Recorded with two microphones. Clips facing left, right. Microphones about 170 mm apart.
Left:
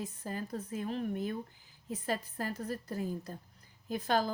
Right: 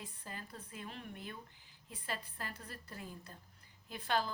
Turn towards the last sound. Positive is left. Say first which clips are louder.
# left 6 dB
turn(degrees=40)  # may be behind; listen again after turning